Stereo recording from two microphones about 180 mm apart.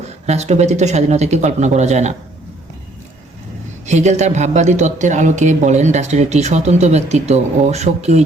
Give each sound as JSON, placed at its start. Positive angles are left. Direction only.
{"t": 0.3, "sound": "speech", "side_deg": -40}
{"t": 3.8, "sound": "speech", "side_deg": -40}